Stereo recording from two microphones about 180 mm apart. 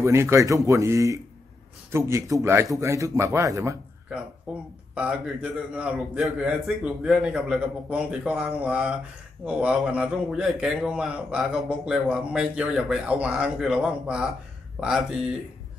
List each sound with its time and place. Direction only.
0.0 s a man's voice: 15° right (ahead or behind)
4.5 s a man's voice: 5° right (ahead or behind)